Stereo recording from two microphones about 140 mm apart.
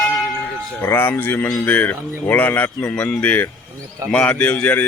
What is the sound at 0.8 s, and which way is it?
Speech, 15° left (ahead or behind).